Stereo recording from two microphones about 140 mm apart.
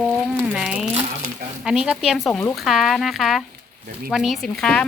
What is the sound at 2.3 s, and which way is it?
Speech, 10° left (ahead or behind).